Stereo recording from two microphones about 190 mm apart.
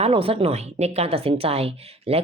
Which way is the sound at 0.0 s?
30° right (ahead or behind).